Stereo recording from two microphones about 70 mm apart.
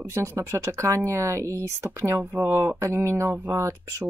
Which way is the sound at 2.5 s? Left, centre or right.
Right.